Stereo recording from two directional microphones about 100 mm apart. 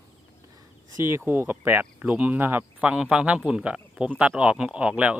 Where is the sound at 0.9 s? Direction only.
30° right (ahead or behind).